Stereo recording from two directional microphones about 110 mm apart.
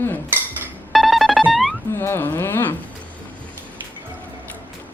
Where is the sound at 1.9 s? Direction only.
20° left (ahead or behind).